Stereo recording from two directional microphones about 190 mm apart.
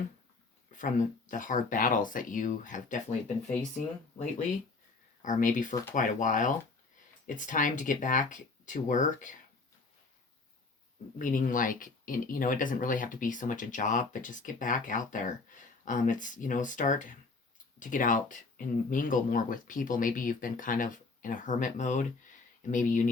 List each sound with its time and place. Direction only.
0.7 s speech: 40° left (ahead or behind)
5.2 s speech: 40° left (ahead or behind)
11.2 s speech: 45° left (ahead or behind)